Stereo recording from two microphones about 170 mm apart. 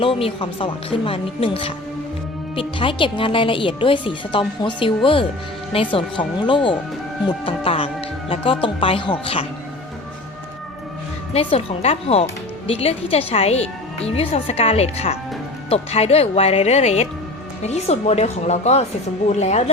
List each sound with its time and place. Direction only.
0.0 s speech: 35° left (ahead or behind)
11.3 s speech: 35° left (ahead or behind)